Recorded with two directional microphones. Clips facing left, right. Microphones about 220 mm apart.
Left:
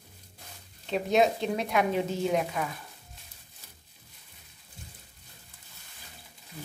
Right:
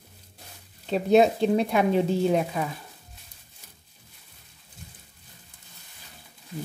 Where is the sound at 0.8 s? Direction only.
35° right (ahead or behind).